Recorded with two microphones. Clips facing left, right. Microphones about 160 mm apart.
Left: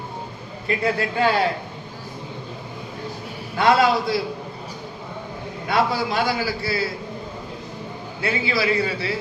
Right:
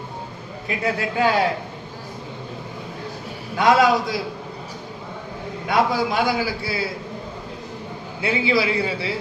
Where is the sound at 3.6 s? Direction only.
15° right (ahead or behind).